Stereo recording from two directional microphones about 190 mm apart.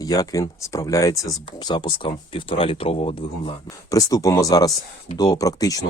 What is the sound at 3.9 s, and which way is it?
Speech, 20° left (ahead or behind).